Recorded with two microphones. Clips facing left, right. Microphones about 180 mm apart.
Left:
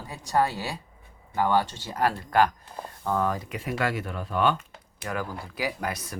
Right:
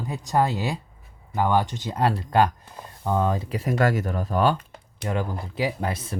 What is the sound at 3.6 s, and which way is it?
Speech, 40° right (ahead or behind).